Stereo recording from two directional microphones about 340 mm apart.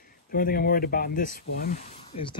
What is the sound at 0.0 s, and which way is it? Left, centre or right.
Speech, left.